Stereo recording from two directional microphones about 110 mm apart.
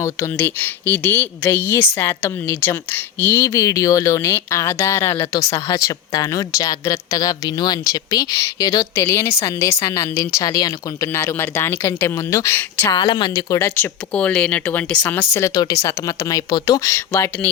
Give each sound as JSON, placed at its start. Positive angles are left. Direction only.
{"t": 0.0, "sound": "speech", "side_deg": 20}
{"t": 12.9, "sound": "speech", "side_deg": 45}
{"t": 13.5, "sound": "speech", "side_deg": 25}
{"t": 14.1, "sound": "speech", "side_deg": 15}
{"t": 16.9, "sound": "speech", "side_deg": 25}